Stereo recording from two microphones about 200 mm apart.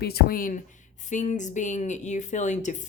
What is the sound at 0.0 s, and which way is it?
Speech, 50° left (ahead or behind).